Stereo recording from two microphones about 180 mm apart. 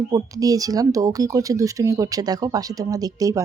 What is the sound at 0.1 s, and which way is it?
Speech, 20° right (ahead or behind).